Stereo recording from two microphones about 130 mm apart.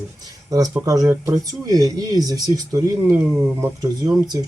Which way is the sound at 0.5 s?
25° right (ahead or behind).